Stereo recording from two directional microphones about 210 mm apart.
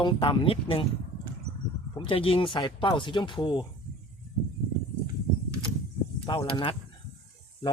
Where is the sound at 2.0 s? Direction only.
25° left (ahead or behind).